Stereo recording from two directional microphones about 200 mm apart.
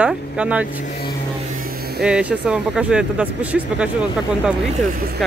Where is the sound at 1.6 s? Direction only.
50° right (ahead or behind).